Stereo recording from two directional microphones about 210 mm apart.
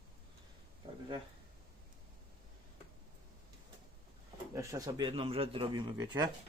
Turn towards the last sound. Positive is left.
turn(degrees=-20)  # may be behind; listen again after turning